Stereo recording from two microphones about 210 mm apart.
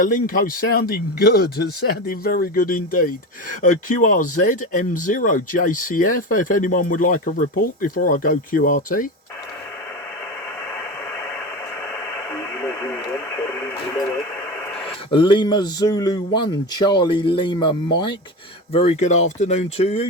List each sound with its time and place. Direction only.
0.0 s speech: 40° left (ahead or behind)
12.3 s radio: 10° left (ahead or behind)
14.8 s speech: 25° left (ahead or behind)